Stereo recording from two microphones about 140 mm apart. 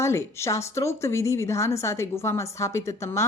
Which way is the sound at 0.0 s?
20° left (ahead or behind).